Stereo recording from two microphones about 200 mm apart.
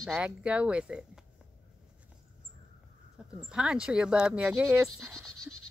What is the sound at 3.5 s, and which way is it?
Speech, 5° right (ahead or behind).